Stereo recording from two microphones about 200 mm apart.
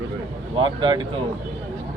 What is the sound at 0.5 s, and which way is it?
Speech, 25° right (ahead or behind).